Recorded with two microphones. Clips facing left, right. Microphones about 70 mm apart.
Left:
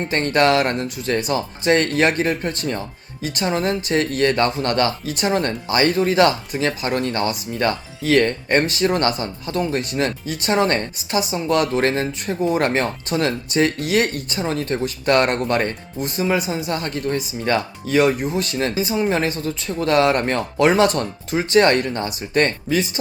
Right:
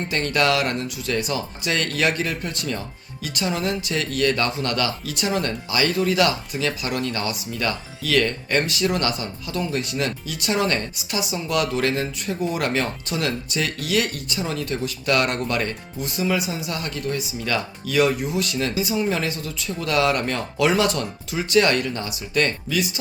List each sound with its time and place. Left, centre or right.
0.1 s speech: left
18.3 s speech: left